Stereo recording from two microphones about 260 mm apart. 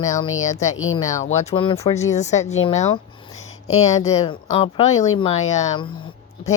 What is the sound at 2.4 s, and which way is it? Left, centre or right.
Speech, left.